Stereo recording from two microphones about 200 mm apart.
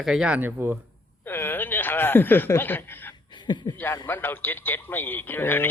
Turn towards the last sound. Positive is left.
turn(degrees=10)  # may be behind; listen again after turning